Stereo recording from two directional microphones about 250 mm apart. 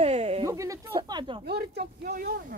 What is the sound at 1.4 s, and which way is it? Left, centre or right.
Speech, right.